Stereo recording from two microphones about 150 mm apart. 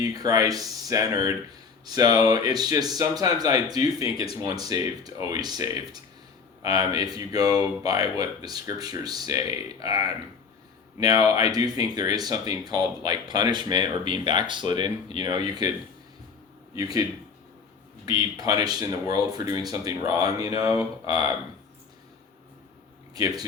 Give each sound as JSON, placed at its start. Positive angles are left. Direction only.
{"t": 0.0, "sound": "speech", "side_deg": -25}
{"t": 16.7, "sound": "speech", "side_deg": -25}
{"t": 23.1, "sound": "speech", "side_deg": -25}